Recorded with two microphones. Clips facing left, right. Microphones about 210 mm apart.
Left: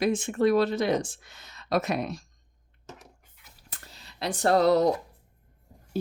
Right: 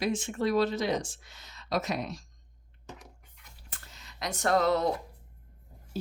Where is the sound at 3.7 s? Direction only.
35° left (ahead or behind).